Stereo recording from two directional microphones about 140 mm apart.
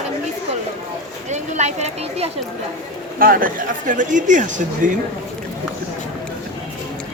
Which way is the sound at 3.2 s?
80° right.